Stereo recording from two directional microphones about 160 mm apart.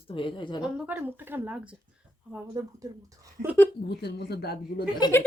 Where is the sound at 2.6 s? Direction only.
20° right (ahead or behind).